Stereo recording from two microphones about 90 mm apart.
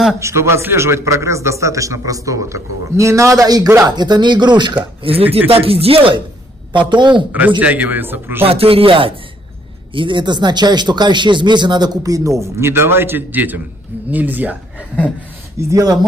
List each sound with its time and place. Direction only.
0.2 s a man's voice: 30° right (ahead or behind)
3.9 s speech: 55° right (ahead or behind)
5.1 s speech: 90° right
6.7 s speech: 60° right (ahead or behind)
7.3 s a man's voice: 15° right (ahead or behind)
8.5 s speech: 90° right
9.9 s a man's voice: 65° right (ahead or behind); by 14.6 s 20° right (ahead or behind)
15.7 s a man's voice: 40° right (ahead or behind)